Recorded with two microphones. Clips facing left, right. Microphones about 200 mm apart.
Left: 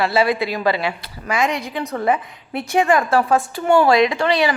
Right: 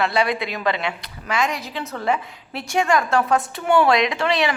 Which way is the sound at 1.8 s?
15° left (ahead or behind).